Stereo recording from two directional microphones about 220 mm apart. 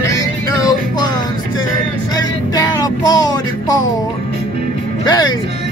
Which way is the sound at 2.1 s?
15° left (ahead or behind).